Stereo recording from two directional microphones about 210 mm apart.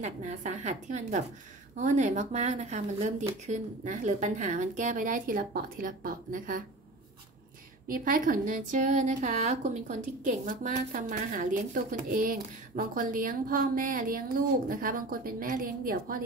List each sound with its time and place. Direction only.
0.0 s a woman's voice: 35° right (ahead or behind)
7.9 s a woman's voice: 40° right (ahead or behind)